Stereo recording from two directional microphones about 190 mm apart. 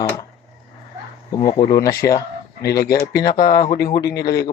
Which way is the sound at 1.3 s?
20° left (ahead or behind).